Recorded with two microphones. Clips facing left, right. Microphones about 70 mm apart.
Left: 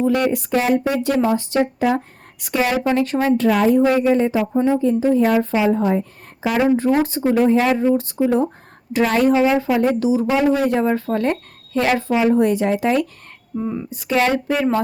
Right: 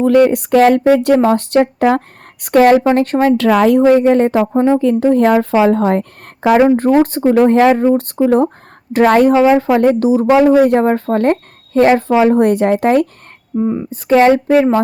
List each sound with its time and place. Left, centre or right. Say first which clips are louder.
0.3 s a woman's voice: right 8 dB; right
3.3 s a woman's voice: right 3 dB; right
4.8 s a woman's voice: right 5 dB; right
6.6 s speech: right 4 dB; right
12.2 s speech: right 5 dB; right
13.6 s speech: right 8 dB; right
13.9 s speech: right 9 dB; right
14.3 s speech: right 8 dB; right